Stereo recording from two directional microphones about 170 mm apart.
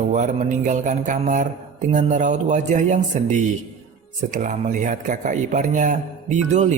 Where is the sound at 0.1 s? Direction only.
45° right (ahead or behind).